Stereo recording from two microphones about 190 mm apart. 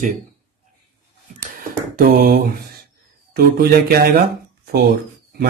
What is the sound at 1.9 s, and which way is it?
Speech, 50° right (ahead or behind).